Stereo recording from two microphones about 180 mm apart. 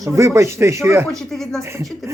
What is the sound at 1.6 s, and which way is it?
Speech, 15° right (ahead or behind).